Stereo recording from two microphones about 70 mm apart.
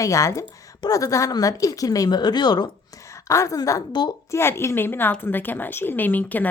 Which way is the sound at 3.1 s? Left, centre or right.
Left.